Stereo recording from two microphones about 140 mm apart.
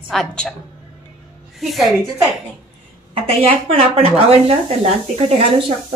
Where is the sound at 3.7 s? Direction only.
45° right (ahead or behind).